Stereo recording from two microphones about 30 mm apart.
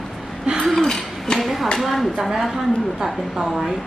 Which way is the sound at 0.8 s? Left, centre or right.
Centre.